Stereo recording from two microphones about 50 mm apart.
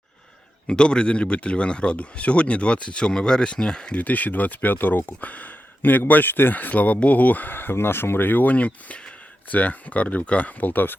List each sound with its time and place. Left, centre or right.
0.7 s a man's voice: centre
3.9 s speech: left